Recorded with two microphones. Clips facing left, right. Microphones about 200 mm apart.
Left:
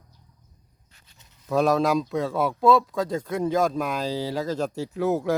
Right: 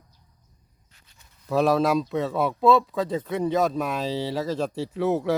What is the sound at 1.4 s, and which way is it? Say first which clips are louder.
Speech: even; centre (ahead or behind).